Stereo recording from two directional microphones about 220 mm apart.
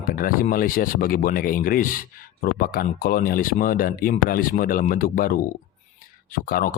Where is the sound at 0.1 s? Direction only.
40° left (ahead or behind).